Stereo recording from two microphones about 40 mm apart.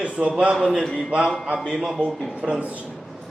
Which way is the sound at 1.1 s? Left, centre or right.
Right.